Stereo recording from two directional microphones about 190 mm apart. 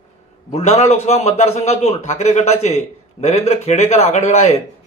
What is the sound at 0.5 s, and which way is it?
Speech, 35° left (ahead or behind).